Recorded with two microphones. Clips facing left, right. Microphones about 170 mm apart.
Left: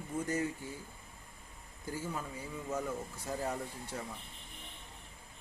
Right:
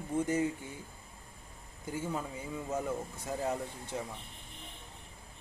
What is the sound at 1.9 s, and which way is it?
Speech, 25° right (ahead or behind).